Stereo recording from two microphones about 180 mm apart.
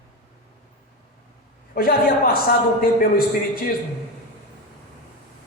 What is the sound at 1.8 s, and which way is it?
A man's voice, 55° left (ahead or behind).